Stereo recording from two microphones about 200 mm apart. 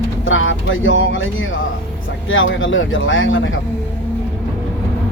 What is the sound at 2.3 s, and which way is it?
Speech, 75° left (ahead or behind).